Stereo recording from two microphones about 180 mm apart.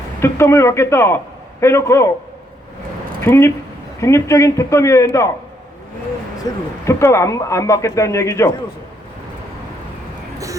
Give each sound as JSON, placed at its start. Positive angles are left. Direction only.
{"t": 0.2, "sound": "a man's voice", "side_deg": 15}
{"t": 3.2, "sound": "a man's voice", "side_deg": 15}
{"t": 6.4, "sound": "a man's voice", "side_deg": 15}
{"t": 10.3, "sound": "a sound", "side_deg": -20}